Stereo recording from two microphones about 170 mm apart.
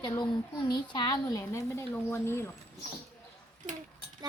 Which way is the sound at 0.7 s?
25° left (ahead or behind).